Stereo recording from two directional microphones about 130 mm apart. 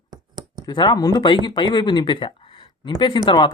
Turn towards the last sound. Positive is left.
turn(degrees=35)  # may be behind; listen again after turning